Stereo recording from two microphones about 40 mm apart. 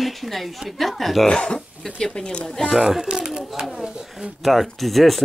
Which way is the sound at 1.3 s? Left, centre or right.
Left.